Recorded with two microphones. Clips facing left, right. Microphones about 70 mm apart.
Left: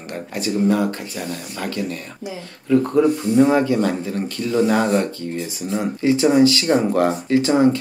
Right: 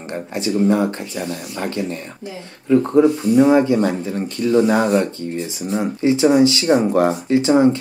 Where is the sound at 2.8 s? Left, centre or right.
Centre.